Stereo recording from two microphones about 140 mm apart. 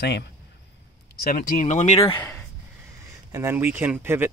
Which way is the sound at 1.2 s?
90° left.